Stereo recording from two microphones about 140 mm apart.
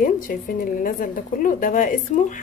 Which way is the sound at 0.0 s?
70° left (ahead or behind).